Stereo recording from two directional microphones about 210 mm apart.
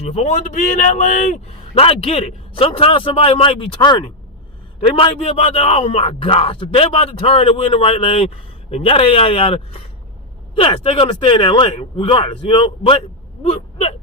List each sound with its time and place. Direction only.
0.0 s speech: 30° left (ahead or behind)